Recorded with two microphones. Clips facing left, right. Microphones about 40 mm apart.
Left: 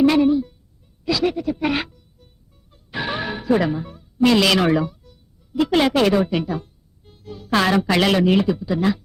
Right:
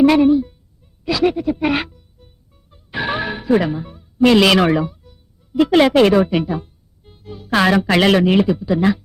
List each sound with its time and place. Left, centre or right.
0.0 s speech: centre
1.0 s music: centre
3.7 s a man's voice: centre